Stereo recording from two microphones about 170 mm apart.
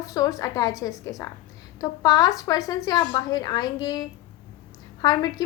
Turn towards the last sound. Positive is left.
turn(degrees=25)  # may be behind; listen again after turning